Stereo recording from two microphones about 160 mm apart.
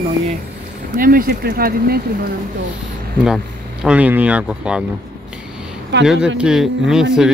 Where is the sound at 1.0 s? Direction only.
65° right (ahead or behind).